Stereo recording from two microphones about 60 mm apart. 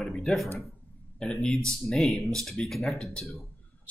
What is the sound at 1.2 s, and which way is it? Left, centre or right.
Speech, centre.